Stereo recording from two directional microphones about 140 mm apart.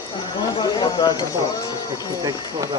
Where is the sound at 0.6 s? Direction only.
30° left (ahead or behind).